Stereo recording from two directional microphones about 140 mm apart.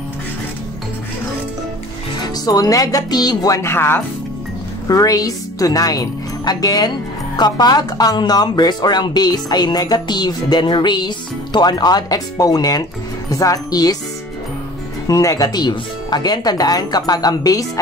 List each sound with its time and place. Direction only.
2.2 s a woman's voice: 30° left (ahead or behind)
15.0 s speech: 25° left (ahead or behind)